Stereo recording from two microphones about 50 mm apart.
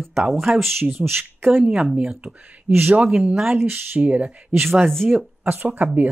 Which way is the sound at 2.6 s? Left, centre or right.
Right.